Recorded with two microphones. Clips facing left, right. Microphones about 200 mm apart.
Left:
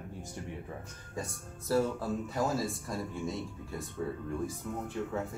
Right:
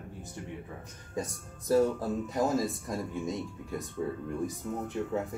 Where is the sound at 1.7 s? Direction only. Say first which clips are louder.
Right 4 dB; 20° right (ahead or behind).